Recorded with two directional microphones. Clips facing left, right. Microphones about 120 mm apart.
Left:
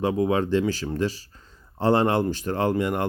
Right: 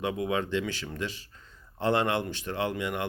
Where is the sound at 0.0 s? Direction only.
35° left (ahead or behind).